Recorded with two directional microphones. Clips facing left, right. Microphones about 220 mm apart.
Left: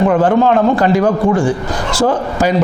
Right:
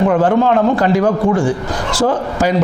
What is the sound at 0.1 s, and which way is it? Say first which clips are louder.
A man's voice: left 1 dB; 25° left (ahead or behind).